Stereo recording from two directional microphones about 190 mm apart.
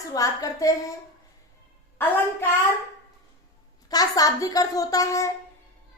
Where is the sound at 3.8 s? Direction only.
20° left (ahead or behind).